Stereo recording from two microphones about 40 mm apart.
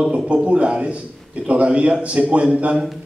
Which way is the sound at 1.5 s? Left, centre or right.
Right.